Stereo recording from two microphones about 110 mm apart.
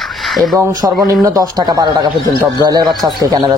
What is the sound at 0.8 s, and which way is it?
Speech, 15° right (ahead or behind).